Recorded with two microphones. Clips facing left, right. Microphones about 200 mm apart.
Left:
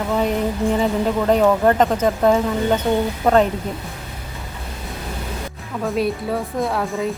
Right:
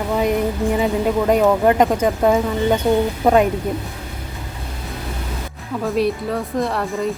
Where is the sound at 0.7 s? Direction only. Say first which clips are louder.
Right 2 dB; 10° right (ahead or behind).